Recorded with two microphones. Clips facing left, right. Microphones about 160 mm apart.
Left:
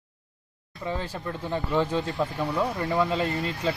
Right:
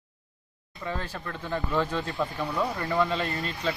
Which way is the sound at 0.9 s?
15° left (ahead or behind).